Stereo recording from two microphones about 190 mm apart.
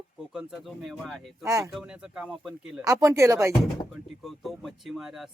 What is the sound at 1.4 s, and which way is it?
Speech, 15° right (ahead or behind).